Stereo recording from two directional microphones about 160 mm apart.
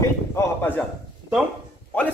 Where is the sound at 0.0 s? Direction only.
15° left (ahead or behind).